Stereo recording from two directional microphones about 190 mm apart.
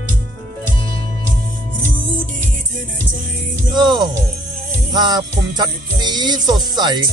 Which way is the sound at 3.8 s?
25° right (ahead or behind).